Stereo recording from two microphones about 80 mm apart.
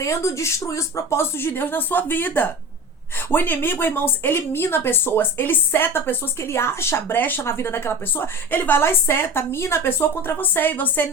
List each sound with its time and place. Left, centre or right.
0.0 s a woman's voice: left